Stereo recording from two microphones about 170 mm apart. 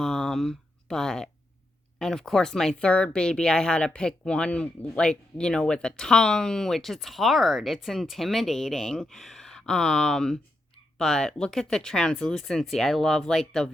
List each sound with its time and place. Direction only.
0.0 s speech: 5° left (ahead or behind)